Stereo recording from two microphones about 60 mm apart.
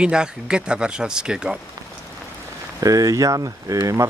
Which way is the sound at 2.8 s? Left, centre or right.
Right.